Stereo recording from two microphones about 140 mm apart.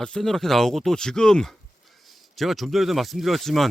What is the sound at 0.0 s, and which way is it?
Speech, 5° left (ahead or behind).